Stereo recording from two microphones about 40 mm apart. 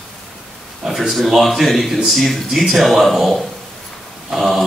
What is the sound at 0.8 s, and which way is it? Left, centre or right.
A man's voice, centre.